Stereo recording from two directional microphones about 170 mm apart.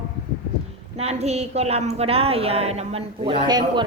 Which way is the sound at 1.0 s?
40° right (ahead or behind).